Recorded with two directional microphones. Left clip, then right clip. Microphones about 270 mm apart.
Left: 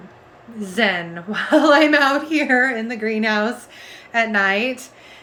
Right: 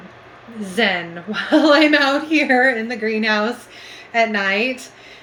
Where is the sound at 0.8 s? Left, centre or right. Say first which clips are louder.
Right 1 dB; centre.